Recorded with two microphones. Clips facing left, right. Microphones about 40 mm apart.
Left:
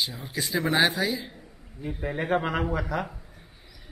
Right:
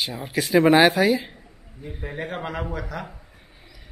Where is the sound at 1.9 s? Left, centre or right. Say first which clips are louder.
Left 2 dB; centre.